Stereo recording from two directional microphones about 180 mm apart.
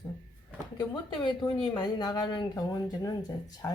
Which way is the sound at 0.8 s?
25° left (ahead or behind).